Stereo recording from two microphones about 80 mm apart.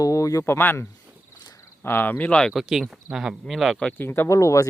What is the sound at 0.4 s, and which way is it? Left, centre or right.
Speech, left.